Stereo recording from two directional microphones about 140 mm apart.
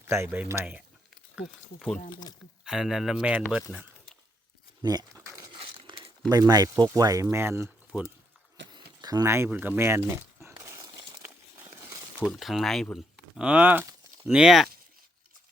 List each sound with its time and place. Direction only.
0.1 s speech: 15° right (ahead or behind)
1.4 s speech: 5° left (ahead or behind)
3.7 s a sound: centre (ahead or behind)
4.8 s a sound: 30° right (ahead or behind)
5.5 s a sound: 40° right (ahead or behind)
6.2 s speech: 30° right (ahead or behind)
8.7 s speech: 30° right (ahead or behind)
10.4 s crumpling: 20° right (ahead or behind)
12.3 s speech: centre (ahead or behind)